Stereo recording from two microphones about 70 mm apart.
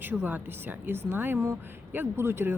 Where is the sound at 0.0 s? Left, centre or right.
Right.